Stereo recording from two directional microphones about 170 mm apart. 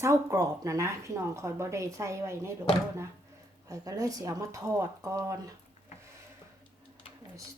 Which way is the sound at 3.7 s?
20° right (ahead or behind).